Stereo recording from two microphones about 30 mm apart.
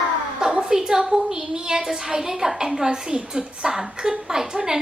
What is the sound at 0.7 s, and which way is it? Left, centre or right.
A woman's voice, centre.